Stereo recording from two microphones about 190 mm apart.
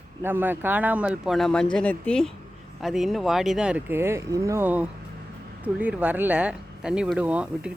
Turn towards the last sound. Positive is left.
turn(degrees=-5)  # may be behind; listen again after turning